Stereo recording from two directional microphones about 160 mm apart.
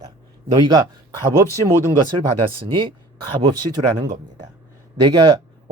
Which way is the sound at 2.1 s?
35° right (ahead or behind).